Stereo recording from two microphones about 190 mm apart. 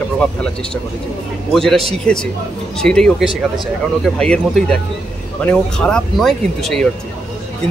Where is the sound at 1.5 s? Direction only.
Centre (ahead or behind).